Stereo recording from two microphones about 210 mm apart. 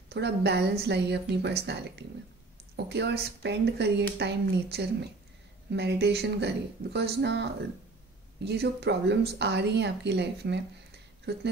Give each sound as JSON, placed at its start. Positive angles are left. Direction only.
{"t": 0.1, "sound": "a woman's voice", "side_deg": -55}
{"t": 8.5, "sound": "a woman's voice", "side_deg": -50}